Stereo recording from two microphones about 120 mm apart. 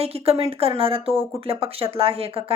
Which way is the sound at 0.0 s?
55° right (ahead or behind).